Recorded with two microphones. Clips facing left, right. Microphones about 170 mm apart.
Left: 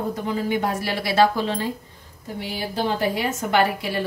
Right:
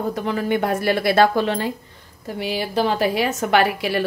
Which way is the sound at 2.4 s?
75° right (ahead or behind).